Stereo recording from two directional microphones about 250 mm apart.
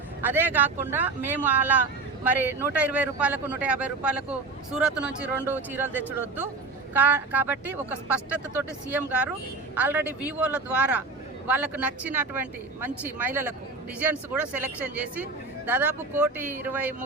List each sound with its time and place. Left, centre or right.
0.2 s speech: centre